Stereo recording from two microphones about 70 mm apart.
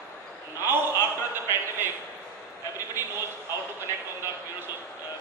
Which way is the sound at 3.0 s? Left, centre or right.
Right.